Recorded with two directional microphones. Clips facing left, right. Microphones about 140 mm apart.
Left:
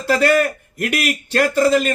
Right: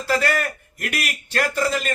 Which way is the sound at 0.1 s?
25° left (ahead or behind).